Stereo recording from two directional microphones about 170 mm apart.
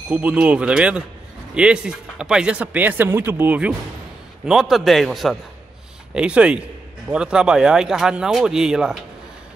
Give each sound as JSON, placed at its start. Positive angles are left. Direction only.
{"t": 0.1, "sound": "speech", "side_deg": -10}